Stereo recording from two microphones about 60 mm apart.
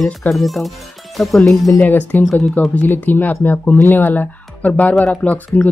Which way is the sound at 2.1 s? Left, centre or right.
Left.